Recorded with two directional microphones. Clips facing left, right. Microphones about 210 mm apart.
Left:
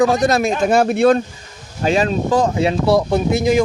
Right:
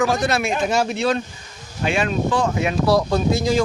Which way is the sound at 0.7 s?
55° left (ahead or behind).